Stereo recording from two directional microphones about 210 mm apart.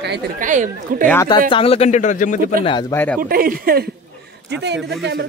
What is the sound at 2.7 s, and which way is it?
Speech, 20° left (ahead or behind).